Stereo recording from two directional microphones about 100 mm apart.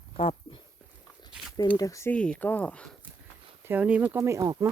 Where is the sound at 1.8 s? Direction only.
35° left (ahead or behind).